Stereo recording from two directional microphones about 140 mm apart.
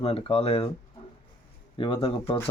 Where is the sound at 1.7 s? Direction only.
35° left (ahead or behind).